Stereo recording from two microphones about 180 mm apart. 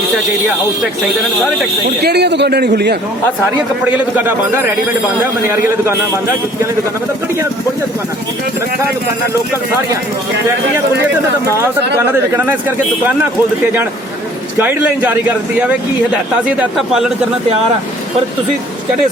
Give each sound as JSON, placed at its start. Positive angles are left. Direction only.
{"t": 2.0, "sound": "a man's voice", "side_deg": -65}
{"t": 3.9, "sound": "speech", "side_deg": -10}
{"t": 14.6, "sound": "speech", "side_deg": -10}